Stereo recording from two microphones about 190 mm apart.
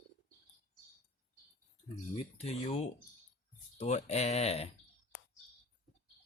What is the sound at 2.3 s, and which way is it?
Speech, 35° left (ahead or behind).